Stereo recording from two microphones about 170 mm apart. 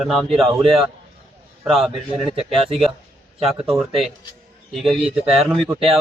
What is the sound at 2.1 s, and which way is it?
Speech, 35° right (ahead or behind).